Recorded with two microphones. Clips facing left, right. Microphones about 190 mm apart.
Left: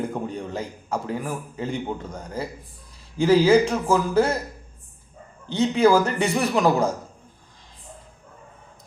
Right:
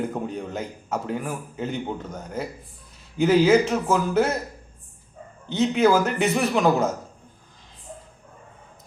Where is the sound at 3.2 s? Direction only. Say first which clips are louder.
Left 1 dB; 5° right (ahead or behind).